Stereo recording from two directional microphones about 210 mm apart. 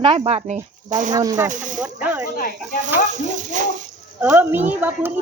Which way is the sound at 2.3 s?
45° left (ahead or behind).